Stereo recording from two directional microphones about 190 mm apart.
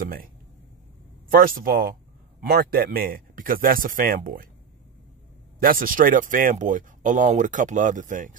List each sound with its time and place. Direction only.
1.3 s speech: 50° right (ahead or behind)
5.6 s speech: 50° right (ahead or behind)